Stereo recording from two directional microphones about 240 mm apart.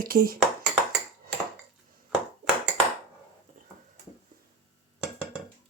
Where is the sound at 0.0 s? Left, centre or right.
Right.